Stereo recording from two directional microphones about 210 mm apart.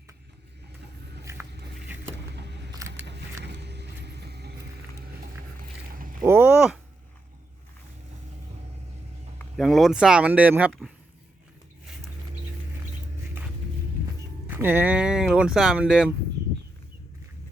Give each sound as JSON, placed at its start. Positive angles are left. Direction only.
{"t": 1.2, "sound": "biting", "side_deg": -10}
{"t": 2.3, "sound": "a sound", "side_deg": -55}
{"t": 6.2, "sound": "speech", "side_deg": -10}
{"t": 9.4, "sound": "speech", "side_deg": 0}
{"t": 14.4, "sound": "speech", "side_deg": -10}